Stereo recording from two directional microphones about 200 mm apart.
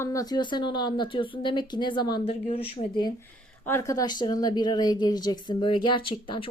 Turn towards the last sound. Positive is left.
turn(degrees=25)  # may be behind; listen again after turning